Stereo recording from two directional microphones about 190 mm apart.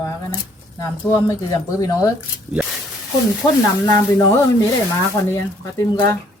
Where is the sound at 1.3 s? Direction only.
15° left (ahead or behind).